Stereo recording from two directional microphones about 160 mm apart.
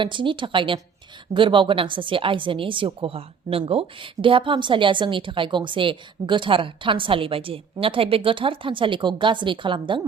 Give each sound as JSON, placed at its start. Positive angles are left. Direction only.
{"t": 0.0, "sound": "a woman's voice", "side_deg": -30}